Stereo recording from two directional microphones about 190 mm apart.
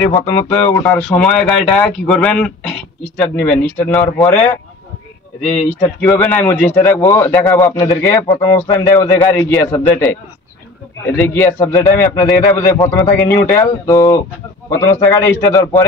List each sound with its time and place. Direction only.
0.0 s a man's voice: 10° left (ahead or behind)
5.9 s a man's voice: 5° left (ahead or behind)
11.1 s a man's voice: 10° left (ahead or behind)